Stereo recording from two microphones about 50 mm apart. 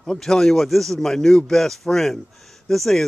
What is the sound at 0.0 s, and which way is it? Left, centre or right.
Speech, centre.